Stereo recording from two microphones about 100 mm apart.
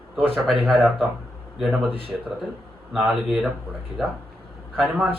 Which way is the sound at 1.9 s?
65° right (ahead or behind).